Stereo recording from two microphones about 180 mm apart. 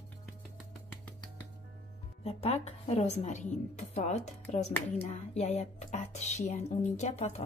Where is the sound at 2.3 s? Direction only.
35° left (ahead or behind).